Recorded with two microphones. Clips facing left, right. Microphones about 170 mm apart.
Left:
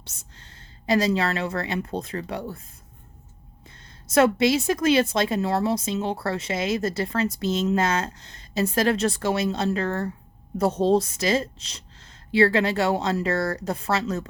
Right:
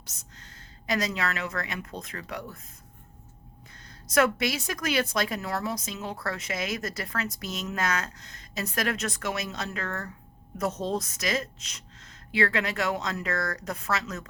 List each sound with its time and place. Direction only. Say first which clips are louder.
0.0 s a woman's voice: left 1 dB; 30° left (ahead or behind)
4.0 s a woman's voice: left 6 dB; 25° left (ahead or behind)